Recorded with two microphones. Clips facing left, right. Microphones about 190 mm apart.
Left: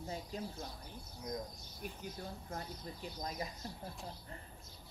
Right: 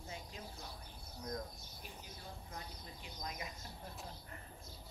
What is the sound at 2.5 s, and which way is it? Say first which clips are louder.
Speech: left 6 dB; 40° left (ahead or behind).